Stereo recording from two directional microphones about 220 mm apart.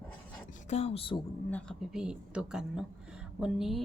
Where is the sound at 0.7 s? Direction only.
30° left (ahead or behind).